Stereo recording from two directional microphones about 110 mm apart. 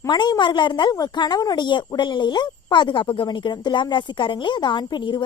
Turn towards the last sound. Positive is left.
turn(degrees=45)  # may be behind; listen again after turning